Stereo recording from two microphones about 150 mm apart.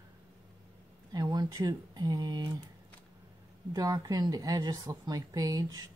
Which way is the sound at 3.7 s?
25° right (ahead or behind).